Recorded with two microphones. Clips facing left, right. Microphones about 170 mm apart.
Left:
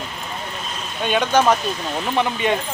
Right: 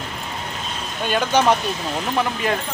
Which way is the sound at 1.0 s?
5° right (ahead or behind).